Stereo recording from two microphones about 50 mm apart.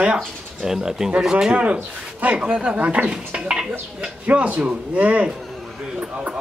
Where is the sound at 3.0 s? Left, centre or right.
Centre.